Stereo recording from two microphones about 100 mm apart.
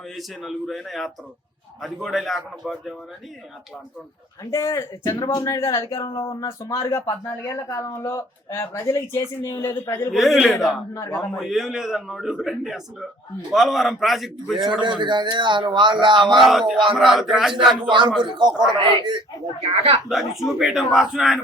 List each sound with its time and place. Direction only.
0.2 s a man's voice: centre (ahead or behind)
4.5 s speech: 30° left (ahead or behind)
10.1 s a man's voice: centre (ahead or behind)
10.9 s speech: 30° left (ahead or behind)
11.2 s a man's voice: centre (ahead or behind)
14.6 s speech: 50° right (ahead or behind)
16.4 s a man's voice: centre (ahead or behind)
18.2 s speech: 50° right (ahead or behind)
19.6 s speech: 75° right (ahead or behind)
20.1 s a man's voice: 5° right (ahead or behind)